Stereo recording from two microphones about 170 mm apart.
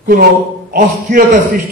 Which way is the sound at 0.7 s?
55° right (ahead or behind).